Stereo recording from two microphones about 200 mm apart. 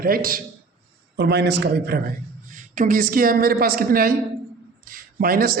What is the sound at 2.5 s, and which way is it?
Speech, 40° right (ahead or behind).